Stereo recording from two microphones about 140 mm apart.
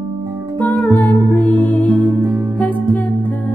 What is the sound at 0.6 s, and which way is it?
Music, 10° left (ahead or behind).